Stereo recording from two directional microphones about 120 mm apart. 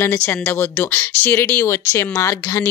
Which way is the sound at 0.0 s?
20° left (ahead or behind).